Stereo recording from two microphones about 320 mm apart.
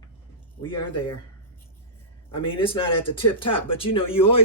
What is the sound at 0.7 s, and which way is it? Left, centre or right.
Speech, left.